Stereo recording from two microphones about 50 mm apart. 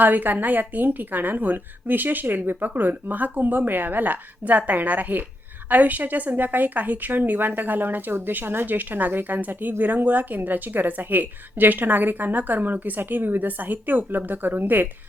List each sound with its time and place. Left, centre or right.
0.0 s a woman's voice: right